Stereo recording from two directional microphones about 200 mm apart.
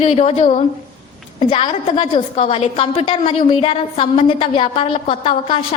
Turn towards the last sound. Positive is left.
turn(degrees=25)  # may be behind; listen again after turning